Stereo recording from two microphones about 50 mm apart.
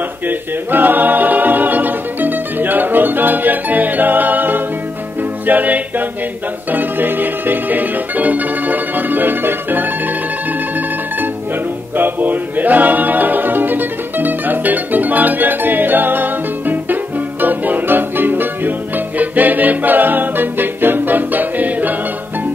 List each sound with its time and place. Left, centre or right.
0.3 s music: right
12.0 s music: right